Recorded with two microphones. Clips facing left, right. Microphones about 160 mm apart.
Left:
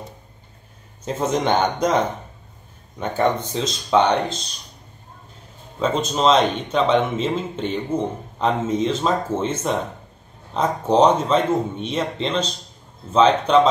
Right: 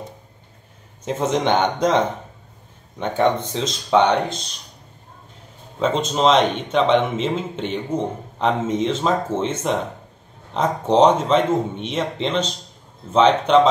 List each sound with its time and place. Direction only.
1.0 s a man's voice: 20° right (ahead or behind)
5.8 s a man's voice: 25° right (ahead or behind)